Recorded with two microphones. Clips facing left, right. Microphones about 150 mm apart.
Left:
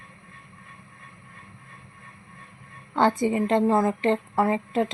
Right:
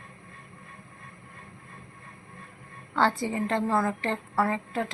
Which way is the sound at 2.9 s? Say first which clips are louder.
Left 4 dB; 20° left (ahead or behind).